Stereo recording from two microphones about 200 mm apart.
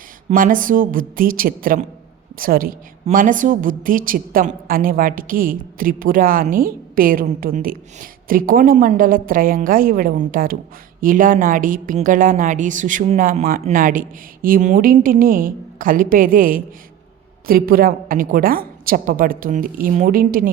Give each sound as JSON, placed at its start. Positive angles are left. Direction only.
{"t": 0.3, "sound": "a woman's voice", "side_deg": -40}